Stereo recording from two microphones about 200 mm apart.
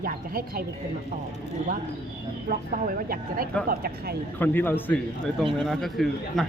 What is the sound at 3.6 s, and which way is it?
Speech, 45° right (ahead or behind).